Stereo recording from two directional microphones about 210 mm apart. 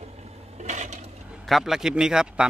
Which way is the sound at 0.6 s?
35° right (ahead or behind).